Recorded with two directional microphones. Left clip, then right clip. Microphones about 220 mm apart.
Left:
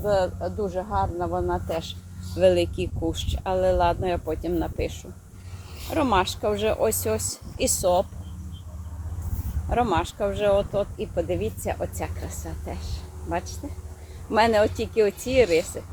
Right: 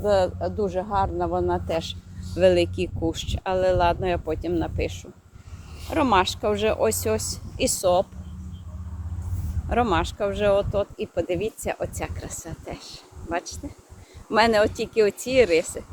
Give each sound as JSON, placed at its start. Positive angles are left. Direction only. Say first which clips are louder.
{"t": 0.0, "sound": "speech", "louder": "right 2 dB", "side_deg": -25}
{"t": 9.6, "sound": "speech", "louder": "right 1 dB", "side_deg": -15}
{"t": 14.3, "sound": "speech", "louder": "right 1 dB", "side_deg": -10}